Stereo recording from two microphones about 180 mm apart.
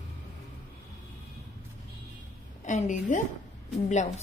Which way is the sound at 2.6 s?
45° left (ahead or behind).